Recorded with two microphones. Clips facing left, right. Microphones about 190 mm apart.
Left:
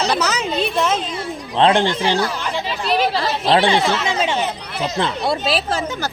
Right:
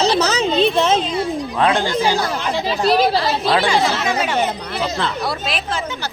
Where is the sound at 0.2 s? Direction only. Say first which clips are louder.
Right 4 dB; 30° right (ahead or behind).